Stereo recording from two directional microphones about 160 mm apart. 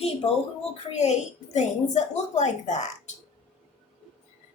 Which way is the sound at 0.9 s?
45° left (ahead or behind).